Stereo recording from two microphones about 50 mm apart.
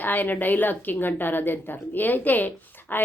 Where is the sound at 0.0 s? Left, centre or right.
Left.